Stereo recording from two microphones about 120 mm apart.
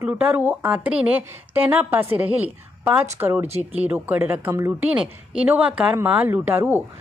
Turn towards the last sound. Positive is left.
turn(degrees=-20)  # may be behind; listen again after turning